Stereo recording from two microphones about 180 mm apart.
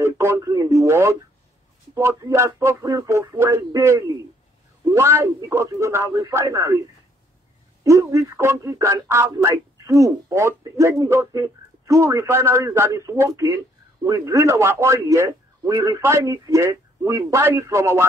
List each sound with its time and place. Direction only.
0.0 s speech: 15° right (ahead or behind)
7.8 s speech: 15° right (ahead or behind)